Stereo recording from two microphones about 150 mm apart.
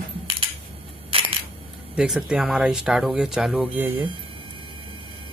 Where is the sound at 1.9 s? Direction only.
5° right (ahead or behind).